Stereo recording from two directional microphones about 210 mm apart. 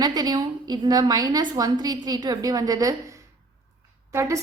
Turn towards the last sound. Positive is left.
turn(degrees=-15)  # may be behind; listen again after turning